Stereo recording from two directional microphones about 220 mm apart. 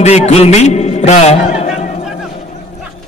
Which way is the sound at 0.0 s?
30° left (ahead or behind).